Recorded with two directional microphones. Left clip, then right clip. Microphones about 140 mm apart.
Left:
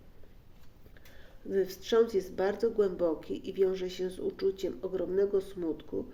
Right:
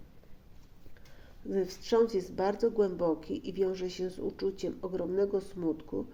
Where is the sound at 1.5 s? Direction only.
45° right (ahead or behind).